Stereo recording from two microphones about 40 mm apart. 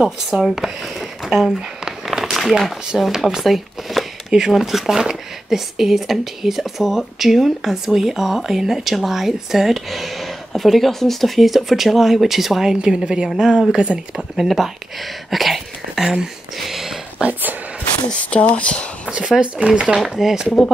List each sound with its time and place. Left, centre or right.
0.0 s speech: centre
0.6 s a sound: centre
3.0 s speech: centre
12.8 s speech: centre
14.4 s speech: centre
16.6 s a sound: centre
17.2 s speech: right
18.2 s speech: left
19.0 s speech: centre
20.1 s speech: centre
20.6 s speech: centre